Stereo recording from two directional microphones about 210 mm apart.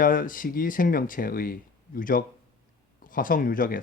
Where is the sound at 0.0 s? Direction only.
40° left (ahead or behind).